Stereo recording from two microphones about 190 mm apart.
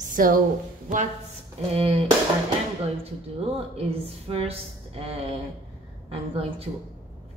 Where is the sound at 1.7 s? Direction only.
30° right (ahead or behind).